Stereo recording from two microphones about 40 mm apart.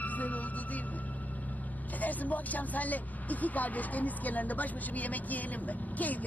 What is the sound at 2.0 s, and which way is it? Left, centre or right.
Speech, left.